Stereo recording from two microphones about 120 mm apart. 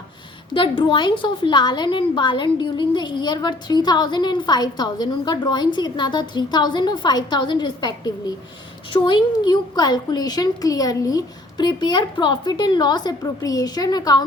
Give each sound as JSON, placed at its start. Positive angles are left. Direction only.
{"t": 0.5, "sound": "a woman's voice", "side_deg": 45}